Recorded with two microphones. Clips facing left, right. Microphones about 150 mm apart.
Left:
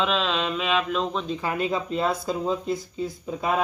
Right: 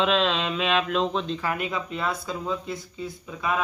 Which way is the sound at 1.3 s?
25° left (ahead or behind).